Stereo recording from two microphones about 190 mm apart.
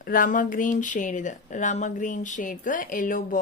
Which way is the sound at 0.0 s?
45° left (ahead or behind).